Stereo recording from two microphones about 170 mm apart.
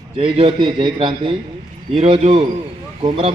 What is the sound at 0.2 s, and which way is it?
A man's voice, 30° right (ahead or behind).